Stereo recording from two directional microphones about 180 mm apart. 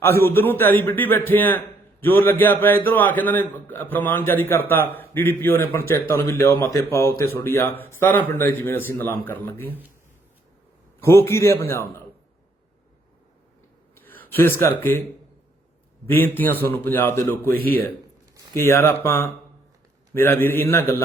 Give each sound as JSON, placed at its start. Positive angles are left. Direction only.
{"t": 0.0, "sound": "a man's voice", "side_deg": 15}
{"t": 11.0, "sound": "a man's voice", "side_deg": 15}
{"t": 13.9, "sound": "speech", "side_deg": 10}
{"t": 16.0, "sound": "a man's voice", "side_deg": 10}